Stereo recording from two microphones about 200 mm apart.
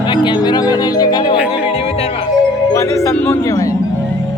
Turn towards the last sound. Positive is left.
turn(degrees=15)  # may be behind; listen again after turning